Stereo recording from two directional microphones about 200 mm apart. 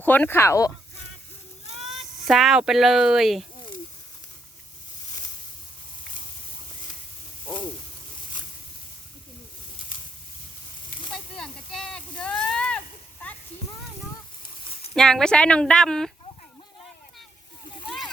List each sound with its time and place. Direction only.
0.0 s speech: 10° left (ahead or behind)
1.8 s speech: centre (ahead or behind)
11.3 s a sound: centre (ahead or behind)
14.7 s a sound: 30° left (ahead or behind)
14.9 s speech: 5° left (ahead or behind)
17.8 s vehicle: centre (ahead or behind)